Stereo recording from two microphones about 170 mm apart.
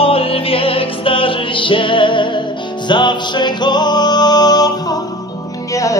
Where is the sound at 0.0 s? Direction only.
35° left (ahead or behind).